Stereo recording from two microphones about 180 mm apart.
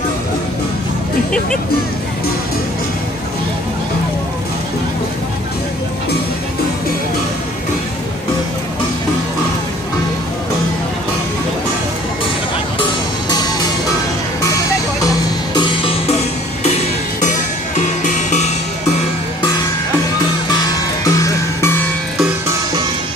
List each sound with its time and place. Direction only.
15.5 s music: 30° left (ahead or behind)
17.2 s music: 45° left (ahead or behind)
21.0 s music: 20° left (ahead or behind)